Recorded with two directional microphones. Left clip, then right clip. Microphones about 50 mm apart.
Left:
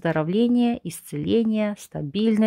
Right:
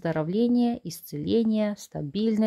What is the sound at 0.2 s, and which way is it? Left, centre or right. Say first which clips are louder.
Speech: left 1 dB; left.